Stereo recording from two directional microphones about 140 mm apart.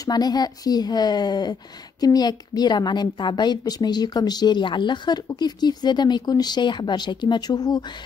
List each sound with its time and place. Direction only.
0.0 s a woman's voice: 30° left (ahead or behind)